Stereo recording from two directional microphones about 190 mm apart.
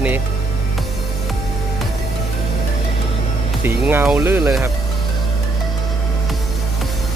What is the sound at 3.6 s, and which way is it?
Speech, 10° right (ahead or behind).